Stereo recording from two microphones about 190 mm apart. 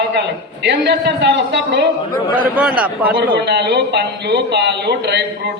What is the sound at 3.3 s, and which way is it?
A man's voice, 65° right (ahead or behind).